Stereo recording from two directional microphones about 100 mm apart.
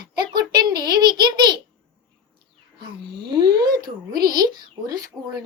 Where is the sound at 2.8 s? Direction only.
45° right (ahead or behind).